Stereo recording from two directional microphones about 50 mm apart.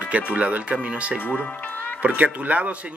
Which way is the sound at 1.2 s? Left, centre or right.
Left.